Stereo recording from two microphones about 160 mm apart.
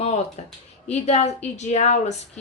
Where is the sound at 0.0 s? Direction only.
40° left (ahead or behind).